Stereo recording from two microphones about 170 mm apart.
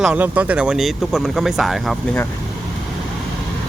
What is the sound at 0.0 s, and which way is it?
Speech, 10° right (ahead or behind).